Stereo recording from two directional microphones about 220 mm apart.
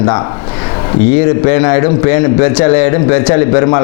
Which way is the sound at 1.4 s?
20° left (ahead or behind).